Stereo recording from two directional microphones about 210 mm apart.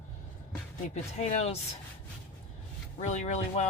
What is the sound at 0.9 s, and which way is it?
Speech, 30° left (ahead or behind).